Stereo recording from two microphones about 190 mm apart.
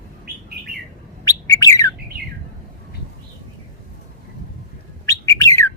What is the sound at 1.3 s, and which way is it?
Bird, 15° left (ahead or behind).